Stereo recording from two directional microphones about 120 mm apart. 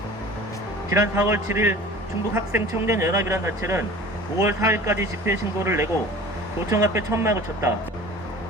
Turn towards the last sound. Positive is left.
turn(degrees=-25)  # may be behind; listen again after turning